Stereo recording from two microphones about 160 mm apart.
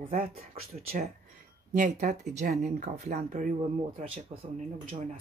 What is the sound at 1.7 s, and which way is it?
Speech, 50° right (ahead or behind).